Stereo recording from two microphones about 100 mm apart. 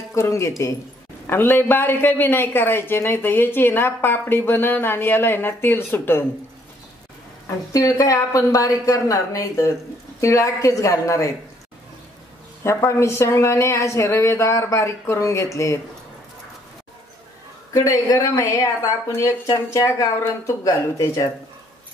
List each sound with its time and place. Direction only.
0.1 s speech: 30° left (ahead or behind)
1.2 s speech: 20° left (ahead or behind)
7.7 s speech: 35° left (ahead or behind)
12.6 s speech: 30° left (ahead or behind)
17.7 s speech: 30° left (ahead or behind)